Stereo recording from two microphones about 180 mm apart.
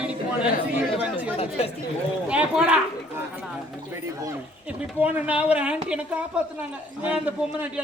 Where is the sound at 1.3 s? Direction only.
35° left (ahead or behind).